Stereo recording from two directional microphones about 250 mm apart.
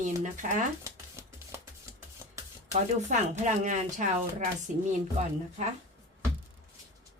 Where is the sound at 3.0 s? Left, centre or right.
Right.